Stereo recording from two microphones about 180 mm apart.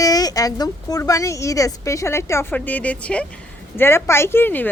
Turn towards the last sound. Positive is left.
turn(degrees=10)  # may be behind; listen again after turning